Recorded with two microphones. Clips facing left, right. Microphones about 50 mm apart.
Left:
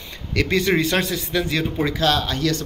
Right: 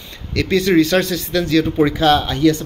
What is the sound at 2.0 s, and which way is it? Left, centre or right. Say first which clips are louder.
Speech: right 5 dB; right.